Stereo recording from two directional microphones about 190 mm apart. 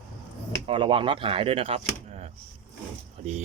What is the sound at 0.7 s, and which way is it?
Speech, 30° right (ahead or behind).